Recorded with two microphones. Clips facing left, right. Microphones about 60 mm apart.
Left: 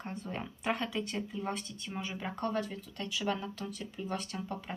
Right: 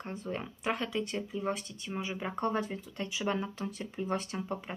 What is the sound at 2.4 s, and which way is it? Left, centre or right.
Speech, right.